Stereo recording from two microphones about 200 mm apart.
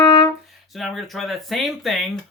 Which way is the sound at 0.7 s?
Centre (ahead or behind).